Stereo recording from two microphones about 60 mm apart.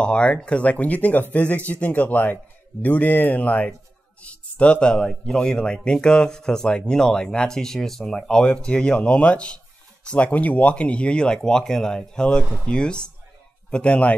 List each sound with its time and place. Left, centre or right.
0.0 s speech: centre